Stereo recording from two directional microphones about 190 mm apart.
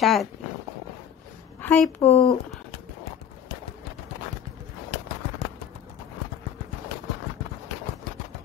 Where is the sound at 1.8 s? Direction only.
30° left (ahead or behind).